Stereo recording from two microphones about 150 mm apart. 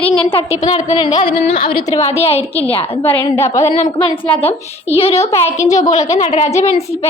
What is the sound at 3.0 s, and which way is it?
Speech, 10° left (ahead or behind).